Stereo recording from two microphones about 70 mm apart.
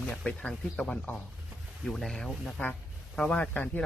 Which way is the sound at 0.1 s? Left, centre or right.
Centre.